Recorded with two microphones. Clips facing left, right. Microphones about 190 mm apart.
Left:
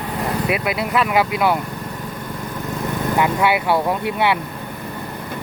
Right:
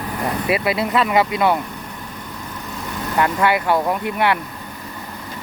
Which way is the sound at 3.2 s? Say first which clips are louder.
Right 1 dB; 10° left (ahead or behind).